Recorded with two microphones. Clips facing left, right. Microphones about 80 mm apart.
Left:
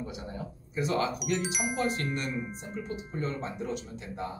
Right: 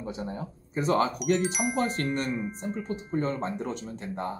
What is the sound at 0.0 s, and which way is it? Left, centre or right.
Speech, right.